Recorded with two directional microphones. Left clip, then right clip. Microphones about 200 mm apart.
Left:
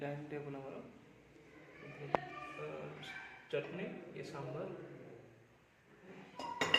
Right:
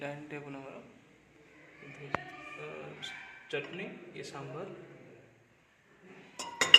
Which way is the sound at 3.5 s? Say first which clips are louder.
Right 3 dB; 40° right (ahead or behind).